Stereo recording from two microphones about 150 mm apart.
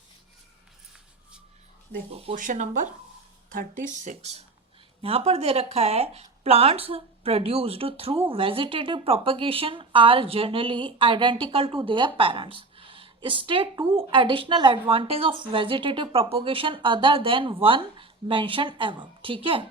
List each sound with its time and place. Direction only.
2.3 s a woman's voice: 60° right (ahead or behind); by 19.6 s 35° right (ahead or behind)